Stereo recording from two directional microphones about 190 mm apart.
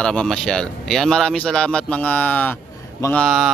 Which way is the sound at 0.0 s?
5° left (ahead or behind).